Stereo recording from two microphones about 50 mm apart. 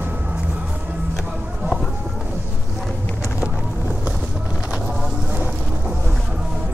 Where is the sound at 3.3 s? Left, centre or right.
Right.